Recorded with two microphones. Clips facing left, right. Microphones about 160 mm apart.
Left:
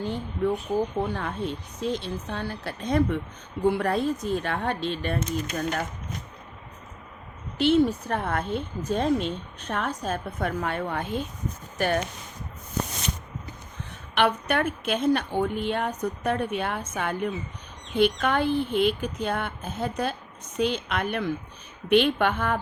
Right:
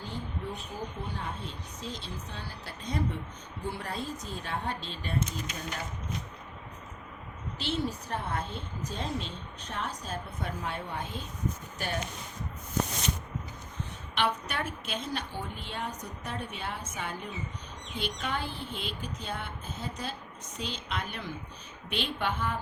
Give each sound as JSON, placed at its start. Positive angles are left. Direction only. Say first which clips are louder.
{"t": 0.1, "sound": "a woman's voice", "louder": "left 10 dB", "side_deg": 70}
{"t": 7.6, "sound": "a woman's voice", "louder": "left 12 dB", "side_deg": 60}
{"t": 14.2, "sound": "a woman's voice", "louder": "left 8 dB", "side_deg": 60}